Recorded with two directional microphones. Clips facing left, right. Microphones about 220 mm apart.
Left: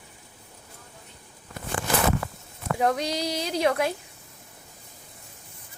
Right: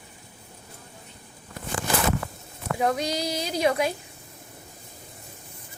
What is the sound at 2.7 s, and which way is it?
A woman's voice, 10° right (ahead or behind).